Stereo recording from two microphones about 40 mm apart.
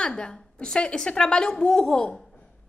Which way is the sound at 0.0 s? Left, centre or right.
Left.